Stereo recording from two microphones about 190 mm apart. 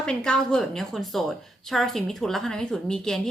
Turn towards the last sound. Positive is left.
turn(degrees=5)  # may be behind; listen again after turning